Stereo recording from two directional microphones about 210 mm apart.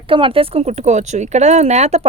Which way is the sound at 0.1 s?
25° right (ahead or behind).